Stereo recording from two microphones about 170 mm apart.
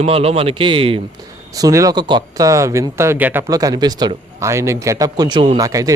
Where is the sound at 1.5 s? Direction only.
20° right (ahead or behind).